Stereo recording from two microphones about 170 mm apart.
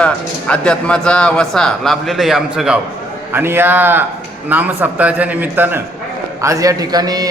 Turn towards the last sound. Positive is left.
turn(degrees=-20)  # may be behind; listen again after turning